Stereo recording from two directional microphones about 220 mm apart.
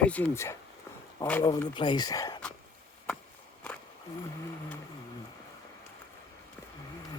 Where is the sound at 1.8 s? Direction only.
20° left (ahead or behind).